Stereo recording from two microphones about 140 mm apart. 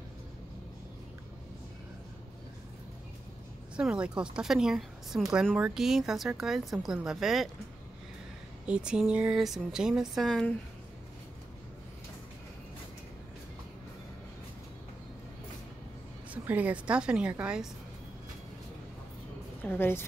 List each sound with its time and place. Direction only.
3.7 s a woman's voice: 5° right (ahead or behind)
8.6 s a woman's voice: 5° right (ahead or behind)
16.4 s a woman's voice: 10° right (ahead or behind)
19.6 s a woman's voice: 15° left (ahead or behind)